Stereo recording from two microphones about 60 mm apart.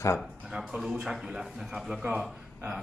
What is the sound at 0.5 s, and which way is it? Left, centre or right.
Speech, centre.